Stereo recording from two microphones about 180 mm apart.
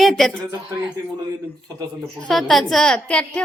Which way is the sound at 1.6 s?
20° right (ahead or behind).